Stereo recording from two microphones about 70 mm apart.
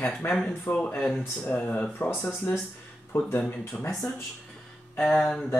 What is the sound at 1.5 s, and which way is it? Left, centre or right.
Speech, left.